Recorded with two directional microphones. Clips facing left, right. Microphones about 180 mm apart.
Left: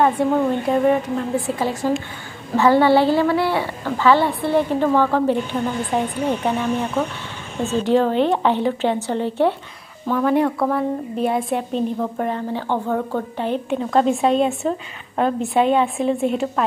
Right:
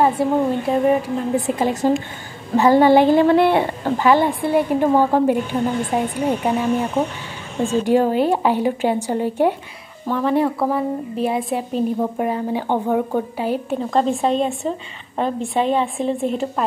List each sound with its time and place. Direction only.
0.0 s a woman's voice: 5° right (ahead or behind); by 3.6 s 20° right (ahead or behind)
3.6 s speech: 40° right (ahead or behind)
4.0 s a woman's voice: 15° right (ahead or behind)
10.0 s a woman's voice: centre (ahead or behind)